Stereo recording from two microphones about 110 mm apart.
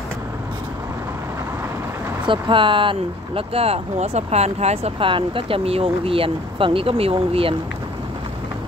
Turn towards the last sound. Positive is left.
turn(degrees=-60)  # may be behind; listen again after turning